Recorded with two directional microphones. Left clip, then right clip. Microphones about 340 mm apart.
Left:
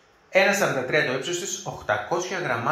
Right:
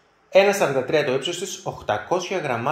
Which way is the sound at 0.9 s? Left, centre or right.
Right.